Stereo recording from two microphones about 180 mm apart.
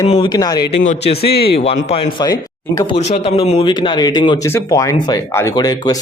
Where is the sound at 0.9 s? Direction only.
35° left (ahead or behind).